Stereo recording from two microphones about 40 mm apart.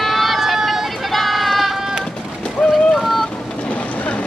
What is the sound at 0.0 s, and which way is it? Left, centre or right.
Vehicle, centre.